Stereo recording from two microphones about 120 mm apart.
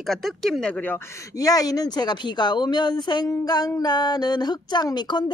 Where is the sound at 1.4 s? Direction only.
30° left (ahead or behind).